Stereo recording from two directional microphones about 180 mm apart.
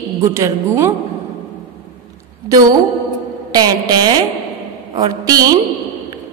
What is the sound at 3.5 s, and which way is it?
A woman's voice, 20° right (ahead or behind).